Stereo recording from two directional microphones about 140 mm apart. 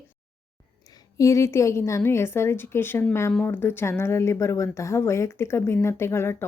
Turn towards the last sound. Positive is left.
turn(degrees=20)  # may be behind; listen again after turning